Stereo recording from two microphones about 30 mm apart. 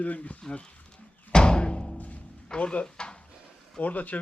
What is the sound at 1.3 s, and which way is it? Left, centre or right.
Music, left.